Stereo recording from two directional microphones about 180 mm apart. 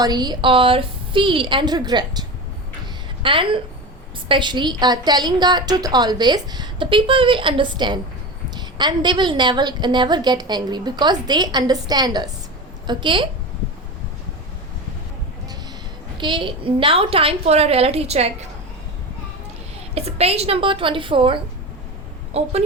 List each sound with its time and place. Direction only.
0.0 s a woman's voice: 25° right (ahead or behind)
3.2 s a woman's voice: 30° right (ahead or behind)
16.1 s a woman's voice: 25° right (ahead or behind)
19.9 s a woman's voice: 35° right (ahead or behind)